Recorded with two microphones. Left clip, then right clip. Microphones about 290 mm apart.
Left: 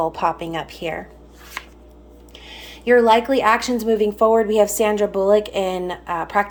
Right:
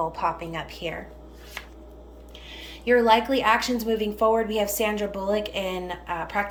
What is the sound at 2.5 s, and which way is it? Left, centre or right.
Speech, centre.